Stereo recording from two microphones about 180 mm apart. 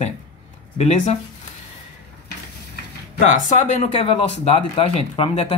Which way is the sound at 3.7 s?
30° left (ahead or behind).